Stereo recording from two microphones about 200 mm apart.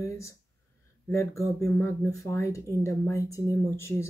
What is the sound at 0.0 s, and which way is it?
Speech, 15° left (ahead or behind).